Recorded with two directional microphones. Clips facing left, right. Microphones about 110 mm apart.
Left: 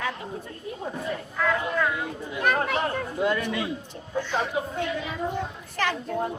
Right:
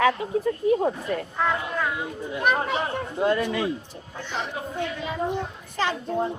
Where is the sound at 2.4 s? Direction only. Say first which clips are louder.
Even; 20° right (ahead or behind).